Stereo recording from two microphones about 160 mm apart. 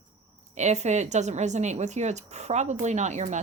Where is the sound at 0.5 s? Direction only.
45° right (ahead or behind).